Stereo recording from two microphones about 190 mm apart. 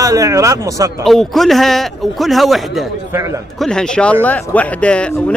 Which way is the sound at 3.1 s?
15° right (ahead or behind).